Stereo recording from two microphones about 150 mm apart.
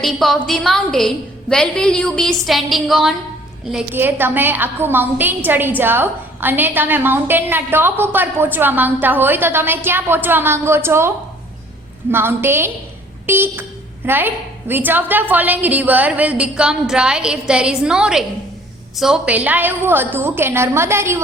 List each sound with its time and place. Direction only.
0.0 s a woman's voice: centre (ahead or behind); by 11.1 s 15° right (ahead or behind)
12.1 s a woman's voice: 15° right (ahead or behind)